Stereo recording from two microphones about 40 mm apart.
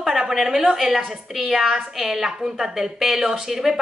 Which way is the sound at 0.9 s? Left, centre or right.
Centre.